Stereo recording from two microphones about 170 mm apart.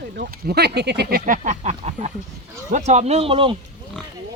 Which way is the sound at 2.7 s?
45° right (ahead or behind).